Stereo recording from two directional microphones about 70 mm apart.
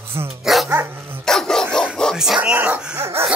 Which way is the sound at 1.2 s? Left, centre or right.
Centre.